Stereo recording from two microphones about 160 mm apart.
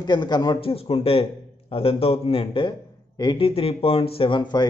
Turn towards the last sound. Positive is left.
turn(degrees=30)  # may be behind; listen again after turning